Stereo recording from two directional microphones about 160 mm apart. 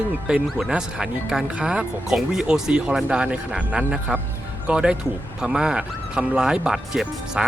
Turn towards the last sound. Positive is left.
turn(degrees=0)  # may be behind; listen again after turning